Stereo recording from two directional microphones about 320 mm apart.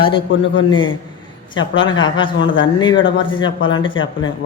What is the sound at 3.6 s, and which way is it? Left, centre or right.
Speech, centre.